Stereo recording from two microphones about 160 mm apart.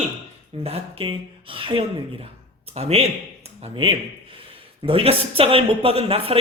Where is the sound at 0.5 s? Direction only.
35° right (ahead or behind).